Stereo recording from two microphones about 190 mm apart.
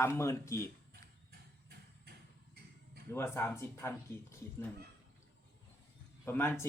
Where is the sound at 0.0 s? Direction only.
15° left (ahead or behind).